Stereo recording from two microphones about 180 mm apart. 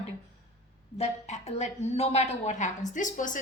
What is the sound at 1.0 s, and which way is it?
A woman's voice, 40° left (ahead or behind).